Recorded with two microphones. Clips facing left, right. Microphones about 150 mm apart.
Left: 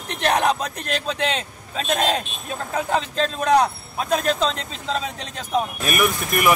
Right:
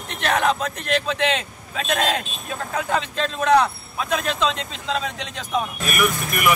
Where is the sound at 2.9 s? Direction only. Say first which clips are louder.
Left 2 dB; 35° left (ahead or behind).